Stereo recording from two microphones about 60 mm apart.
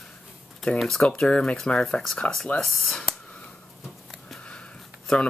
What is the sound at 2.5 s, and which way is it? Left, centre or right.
Speech, left.